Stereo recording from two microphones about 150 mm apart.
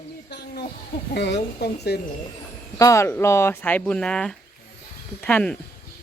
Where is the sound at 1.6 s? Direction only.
90° left.